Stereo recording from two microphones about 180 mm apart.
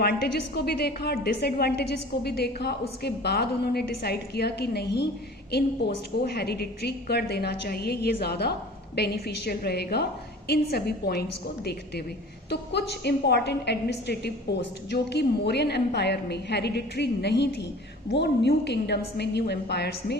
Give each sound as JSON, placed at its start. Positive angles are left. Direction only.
{"t": 0.0, "sound": "a woman's voice", "side_deg": 60}